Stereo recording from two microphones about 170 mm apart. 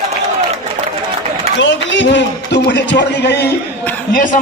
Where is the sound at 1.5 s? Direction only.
90° left.